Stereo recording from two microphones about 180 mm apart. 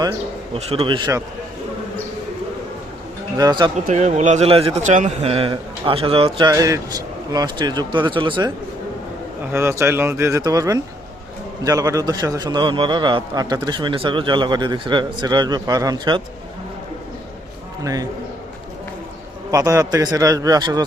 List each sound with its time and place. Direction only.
0.5 s a man's voice: 35° right (ahead or behind)
3.3 s a man's voice: 20° right (ahead or behind)
3.8 s a man's voice: 40° right (ahead or behind); by 8.5 s 25° right (ahead or behind)
9.5 s a man's voice: 15° right (ahead or behind)
19.5 s a man's voice: 15° right (ahead or behind)